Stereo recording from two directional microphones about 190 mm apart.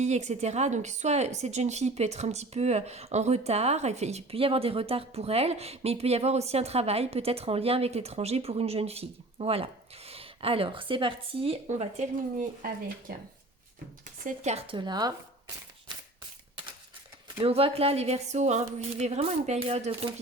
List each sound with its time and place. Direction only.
0.0 s speech: 35° right (ahead or behind)
14.3 s speech: 35° right (ahead or behind)
17.4 s speech: 30° right (ahead or behind)